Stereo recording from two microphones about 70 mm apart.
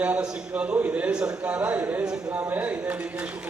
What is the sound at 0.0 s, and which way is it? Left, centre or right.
A man's voice, centre.